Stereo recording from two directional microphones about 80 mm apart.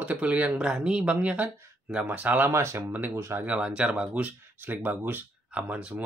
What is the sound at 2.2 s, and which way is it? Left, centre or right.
Speech, right.